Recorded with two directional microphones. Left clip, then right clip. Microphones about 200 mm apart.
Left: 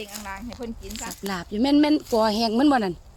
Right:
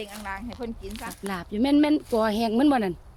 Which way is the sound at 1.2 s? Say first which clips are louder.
Left 2 dB; 20° left (ahead or behind).